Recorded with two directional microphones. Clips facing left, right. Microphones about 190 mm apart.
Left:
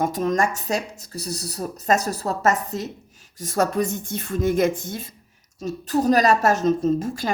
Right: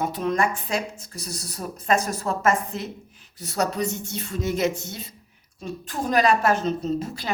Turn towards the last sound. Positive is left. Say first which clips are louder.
# left 5 dB
turn(degrees=50)  # may be behind; listen again after turning